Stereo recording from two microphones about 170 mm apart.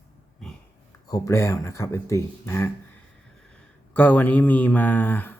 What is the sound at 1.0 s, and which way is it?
Speech, 20° left (ahead or behind).